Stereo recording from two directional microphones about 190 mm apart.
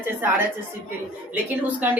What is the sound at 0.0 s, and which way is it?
A woman's voice, 10° right (ahead or behind).